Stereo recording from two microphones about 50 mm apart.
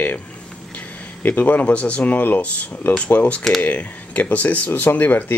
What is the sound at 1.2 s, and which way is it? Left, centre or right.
Speech, left.